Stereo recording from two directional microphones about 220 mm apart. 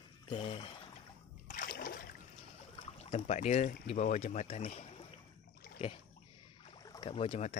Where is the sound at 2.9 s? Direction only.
30° left (ahead or behind).